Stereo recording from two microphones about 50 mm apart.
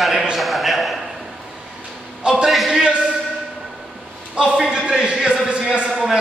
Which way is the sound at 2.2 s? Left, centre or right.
Centre.